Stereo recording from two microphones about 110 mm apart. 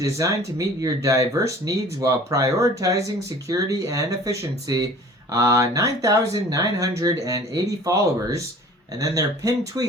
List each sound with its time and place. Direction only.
0.0 s speech: 30° right (ahead or behind)